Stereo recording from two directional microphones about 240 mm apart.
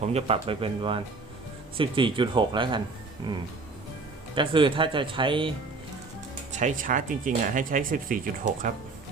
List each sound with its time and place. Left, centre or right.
0.0 s speech: right
3.3 s music: centre
4.4 s speech: right
6.6 s speech: right